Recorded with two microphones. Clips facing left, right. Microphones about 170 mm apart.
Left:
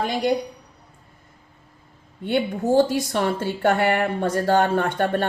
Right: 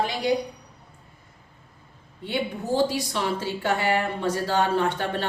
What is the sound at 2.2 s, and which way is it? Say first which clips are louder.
A woman's voice: left 6 dB; 50° left (ahead or behind).